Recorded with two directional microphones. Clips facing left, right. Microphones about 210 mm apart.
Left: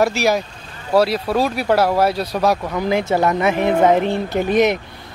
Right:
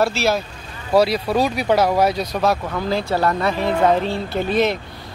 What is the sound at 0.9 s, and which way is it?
Speech, centre (ahead or behind).